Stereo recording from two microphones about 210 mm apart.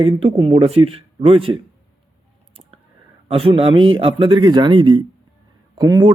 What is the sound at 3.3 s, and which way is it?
Speech, 25° right (ahead or behind).